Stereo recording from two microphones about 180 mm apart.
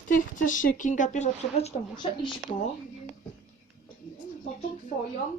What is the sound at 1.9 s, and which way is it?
Speech, 25° left (ahead or behind).